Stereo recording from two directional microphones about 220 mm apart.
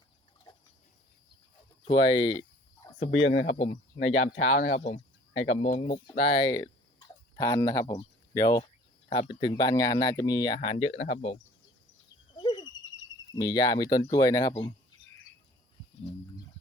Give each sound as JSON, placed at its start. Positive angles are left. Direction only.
{"t": 1.8, "sound": "speech", "side_deg": 20}
{"t": 3.1, "sound": "speech", "side_deg": 60}
{"t": 3.5, "sound": "speech", "side_deg": 30}
{"t": 4.0, "sound": "speech", "side_deg": 60}
{"t": 4.8, "sound": "speech", "side_deg": 35}
{"t": 5.3, "sound": "speech", "side_deg": 65}
{"t": 5.7, "sound": "speech", "side_deg": 25}
{"t": 12.4, "sound": "a sound", "side_deg": 20}
{"t": 13.3, "sound": "speech", "side_deg": 15}